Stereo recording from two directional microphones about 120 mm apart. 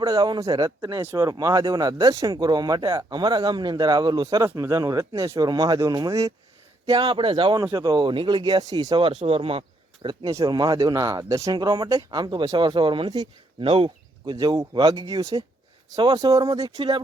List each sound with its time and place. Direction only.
0.0 s speech: 35° right (ahead or behind)
9.2 s speech: 55° right (ahead or behind)
14.3 s speech: 30° right (ahead or behind)